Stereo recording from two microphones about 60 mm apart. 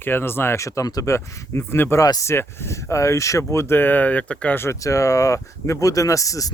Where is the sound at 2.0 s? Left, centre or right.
Left.